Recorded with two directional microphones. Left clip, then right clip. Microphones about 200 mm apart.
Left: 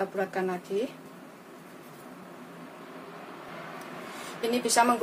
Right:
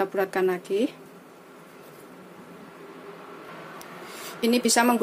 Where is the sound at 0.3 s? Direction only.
50° right (ahead or behind).